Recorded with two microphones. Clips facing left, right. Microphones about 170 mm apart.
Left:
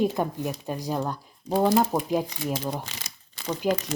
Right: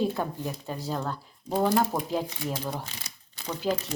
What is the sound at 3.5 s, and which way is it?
Speech, 15° left (ahead or behind).